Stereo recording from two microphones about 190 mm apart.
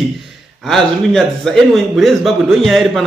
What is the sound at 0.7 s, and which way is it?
A man's voice, centre (ahead or behind).